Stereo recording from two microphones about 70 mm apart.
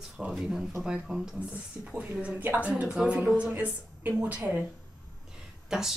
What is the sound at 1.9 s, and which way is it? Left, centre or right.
A woman's voice, centre.